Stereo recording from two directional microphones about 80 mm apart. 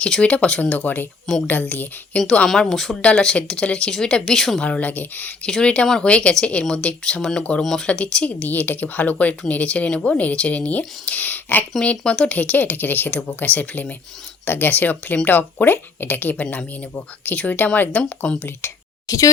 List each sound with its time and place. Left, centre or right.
0.0 s speech: centre
2.5 s speech: centre
4.6 s speech: centre
5.5 s speech: centre
11.8 s speech: centre
18.6 s speech: left
19.0 s speech: left